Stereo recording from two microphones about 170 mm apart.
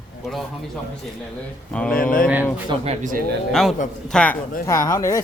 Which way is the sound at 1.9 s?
55° left (ahead or behind).